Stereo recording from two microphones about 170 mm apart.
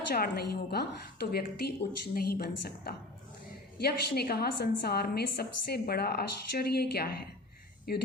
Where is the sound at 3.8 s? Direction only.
70° left (ahead or behind).